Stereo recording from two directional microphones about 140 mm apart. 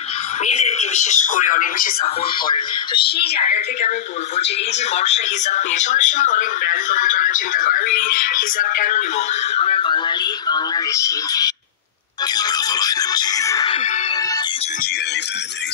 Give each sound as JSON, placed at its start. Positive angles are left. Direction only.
{"t": 0.5, "sound": "speech", "side_deg": 55}
{"t": 2.4, "sound": "speech", "side_deg": 35}
{"t": 3.4, "sound": "speech", "side_deg": 55}
{"t": 9.6, "sound": "speech", "side_deg": 40}
{"t": 12.4, "sound": "music", "side_deg": 30}